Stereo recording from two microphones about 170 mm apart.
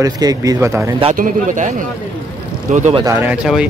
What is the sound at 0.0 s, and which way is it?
Speech, 20° right (ahead or behind).